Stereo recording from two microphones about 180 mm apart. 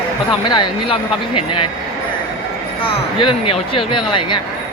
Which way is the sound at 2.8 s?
30° left (ahead or behind).